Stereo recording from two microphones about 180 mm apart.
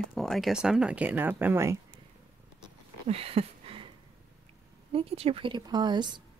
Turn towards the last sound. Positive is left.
turn(degrees=-25)  # may be behind; listen again after turning